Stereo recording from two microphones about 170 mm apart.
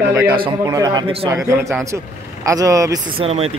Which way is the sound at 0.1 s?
20° right (ahead or behind).